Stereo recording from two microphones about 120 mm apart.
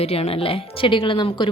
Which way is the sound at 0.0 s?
60° left (ahead or behind).